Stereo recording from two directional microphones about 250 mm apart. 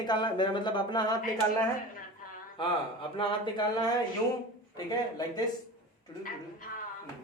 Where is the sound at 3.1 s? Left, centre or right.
Centre.